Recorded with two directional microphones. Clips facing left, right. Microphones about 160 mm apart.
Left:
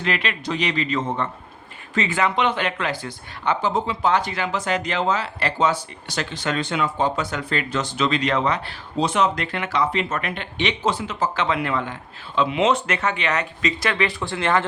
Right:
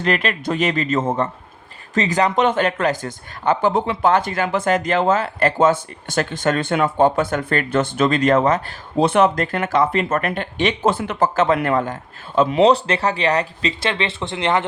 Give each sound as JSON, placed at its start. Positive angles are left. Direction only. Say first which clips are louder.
{"t": 0.0, "sound": "speech", "louder": "right 5 dB", "side_deg": -45}